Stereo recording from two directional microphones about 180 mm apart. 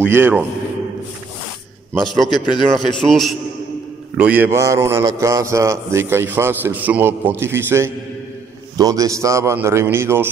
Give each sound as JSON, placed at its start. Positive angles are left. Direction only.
{"t": 0.0, "sound": "a man's voice", "side_deg": -10}
{"t": 2.1, "sound": "a man's voice", "side_deg": 0}
{"t": 4.2, "sound": "a man's voice", "side_deg": -10}